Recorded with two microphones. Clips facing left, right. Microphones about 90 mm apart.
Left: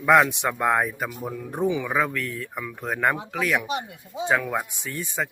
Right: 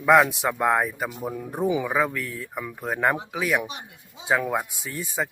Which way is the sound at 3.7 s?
90° left.